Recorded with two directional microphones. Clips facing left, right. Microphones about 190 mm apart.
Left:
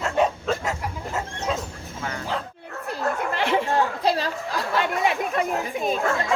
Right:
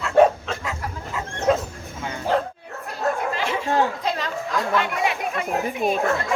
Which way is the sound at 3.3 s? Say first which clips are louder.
Left 3 dB; 65° left (ahead or behind).